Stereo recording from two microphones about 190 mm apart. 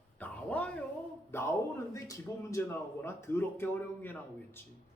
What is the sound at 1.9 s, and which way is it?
A man's voice, 15° left (ahead or behind).